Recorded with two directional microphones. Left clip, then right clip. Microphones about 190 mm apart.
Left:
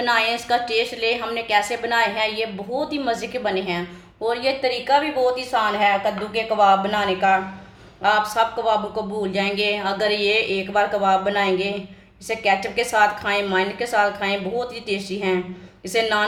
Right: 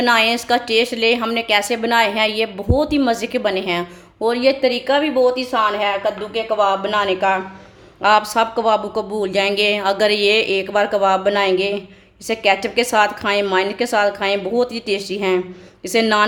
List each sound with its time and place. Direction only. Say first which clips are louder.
0.0 s a woman's voice: right 5 dB; 50° right (ahead or behind)